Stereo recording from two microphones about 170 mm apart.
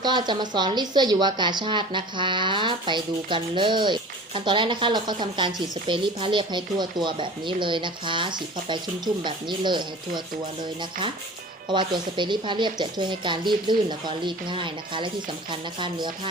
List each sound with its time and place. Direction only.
0.0 s a woman's voice: 25° right (ahead or behind)
11.7 s a woman's voice: 25° right (ahead or behind)